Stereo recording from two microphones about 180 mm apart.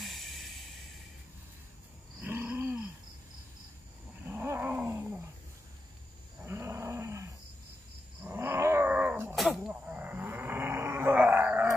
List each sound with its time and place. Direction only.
0.0 s a sound: centre (ahead or behind)
2.1 s wild animals: 10° right (ahead or behind)
4.2 s dog: 10° right (ahead or behind)
6.4 s roaring cats: 15° right (ahead or behind)
8.2 s wild animals: 15° right (ahead or behind)
9.3 s a sound: centre (ahead or behind)